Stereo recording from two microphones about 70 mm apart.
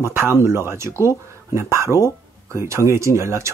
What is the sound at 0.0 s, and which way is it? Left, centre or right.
Speech, right.